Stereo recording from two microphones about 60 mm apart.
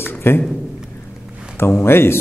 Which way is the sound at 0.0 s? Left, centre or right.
Left.